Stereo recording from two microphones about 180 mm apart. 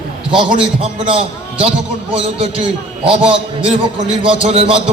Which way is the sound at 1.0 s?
30° right (ahead or behind).